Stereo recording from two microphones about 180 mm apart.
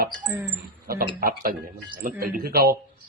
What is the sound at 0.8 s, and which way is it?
A man's voice, 55° right (ahead or behind).